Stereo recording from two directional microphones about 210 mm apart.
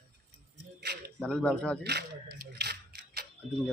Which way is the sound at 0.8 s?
50° right (ahead or behind).